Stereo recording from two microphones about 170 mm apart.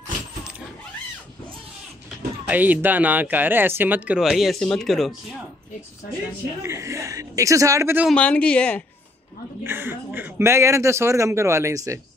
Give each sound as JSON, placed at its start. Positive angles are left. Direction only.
{"t": 2.4, "sound": "speech", "side_deg": -10}
{"t": 6.6, "sound": "speech", "side_deg": -15}
{"t": 8.1, "sound": "speech", "side_deg": 5}
{"t": 9.6, "sound": "speech", "side_deg": -15}